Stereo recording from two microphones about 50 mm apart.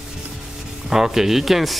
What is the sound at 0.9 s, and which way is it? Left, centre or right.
Speech, centre.